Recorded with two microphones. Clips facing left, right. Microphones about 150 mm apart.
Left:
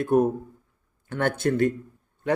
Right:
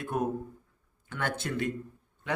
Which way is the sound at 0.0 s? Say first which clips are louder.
Left 10 dB; 45° left (ahead or behind).